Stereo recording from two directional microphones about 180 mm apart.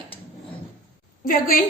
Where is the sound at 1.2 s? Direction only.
50° left (ahead or behind).